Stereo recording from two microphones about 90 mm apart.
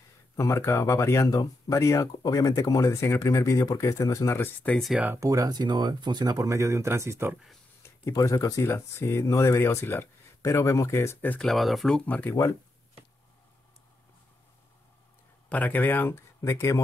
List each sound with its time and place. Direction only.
0.4 s speech: 30° left (ahead or behind)
4.6 s speech: 20° left (ahead or behind)
5.1 s speech: 40° right (ahead or behind)
7.8 s speech: 35° left (ahead or behind)
11.3 s speech: centre (ahead or behind)
12.1 s speech: 20° left (ahead or behind)
15.5 s speech: 20° left (ahead or behind)